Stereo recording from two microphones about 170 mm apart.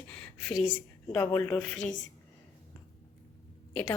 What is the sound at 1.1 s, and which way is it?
Speech, 15° left (ahead or behind).